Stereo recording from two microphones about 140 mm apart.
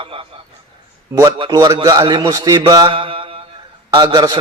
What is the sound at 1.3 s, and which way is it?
Speech, 35° right (ahead or behind).